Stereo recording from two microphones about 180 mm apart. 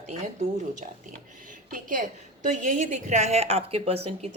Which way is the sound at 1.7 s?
50° right (ahead or behind).